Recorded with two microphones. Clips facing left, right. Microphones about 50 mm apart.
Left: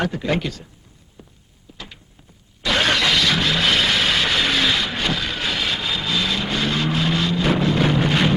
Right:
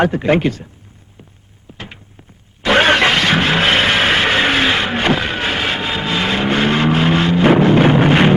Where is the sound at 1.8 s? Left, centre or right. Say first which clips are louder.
Right 5 dB; right.